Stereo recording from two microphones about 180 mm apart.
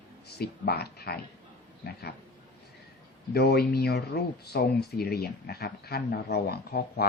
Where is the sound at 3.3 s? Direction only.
65° left (ahead or behind).